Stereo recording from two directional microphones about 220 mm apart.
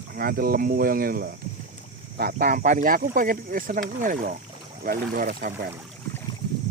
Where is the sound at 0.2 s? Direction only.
40° right (ahead or behind).